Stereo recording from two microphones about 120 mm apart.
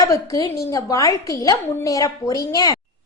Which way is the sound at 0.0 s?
30° left (ahead or behind).